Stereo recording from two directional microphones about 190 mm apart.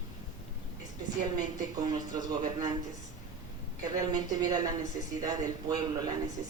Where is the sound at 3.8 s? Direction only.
20° right (ahead or behind).